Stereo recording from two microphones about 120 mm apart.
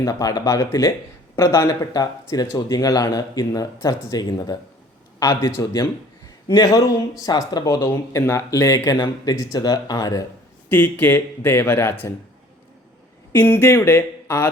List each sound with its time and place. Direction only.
0.0 s speech: 30° left (ahead or behind)
5.2 s speech: 25° left (ahead or behind)
10.7 s speech: 15° left (ahead or behind)
13.3 s speech: 20° left (ahead or behind)